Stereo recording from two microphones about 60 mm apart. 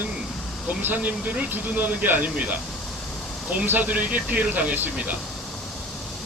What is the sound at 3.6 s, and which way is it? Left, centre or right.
Speech, right.